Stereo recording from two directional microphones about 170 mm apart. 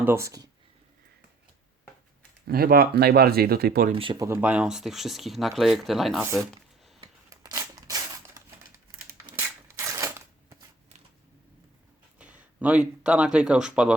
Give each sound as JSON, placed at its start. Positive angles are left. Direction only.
{"t": 0.0, "sound": "speech", "side_deg": -15}
{"t": 2.5, "sound": "speech", "side_deg": -60}
{"t": 3.9, "sound": "speech", "side_deg": -30}
{"t": 4.3, "sound": "speech", "side_deg": -10}
{"t": 7.3, "sound": "a sound", "side_deg": -20}
{"t": 12.2, "sound": "speech", "side_deg": -10}